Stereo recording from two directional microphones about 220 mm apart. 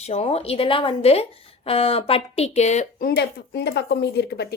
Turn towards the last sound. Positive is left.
turn(degrees=50)  # may be behind; listen again after turning